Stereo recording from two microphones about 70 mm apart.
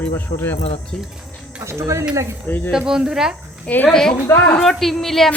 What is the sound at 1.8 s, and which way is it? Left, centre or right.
Speech, right.